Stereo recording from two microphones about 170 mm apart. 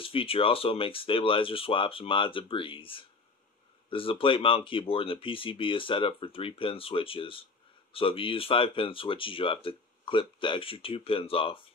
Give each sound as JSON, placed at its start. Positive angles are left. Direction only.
{"t": 0.0, "sound": "speech", "side_deg": 30}